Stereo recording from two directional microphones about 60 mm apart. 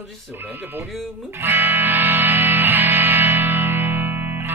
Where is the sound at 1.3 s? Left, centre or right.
Right.